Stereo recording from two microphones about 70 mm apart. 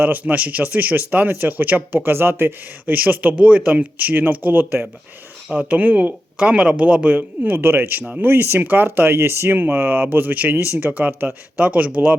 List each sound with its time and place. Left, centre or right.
0.0 s speech: right